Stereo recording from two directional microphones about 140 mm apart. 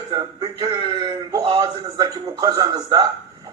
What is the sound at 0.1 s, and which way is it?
A man's voice, 35° right (ahead or behind).